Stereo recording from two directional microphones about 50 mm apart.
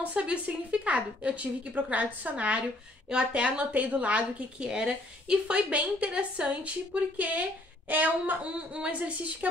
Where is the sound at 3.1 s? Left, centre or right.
Centre.